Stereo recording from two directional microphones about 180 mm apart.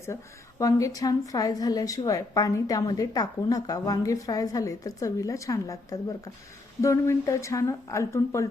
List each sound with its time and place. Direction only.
0.6 s a woman's voice: 20° left (ahead or behind)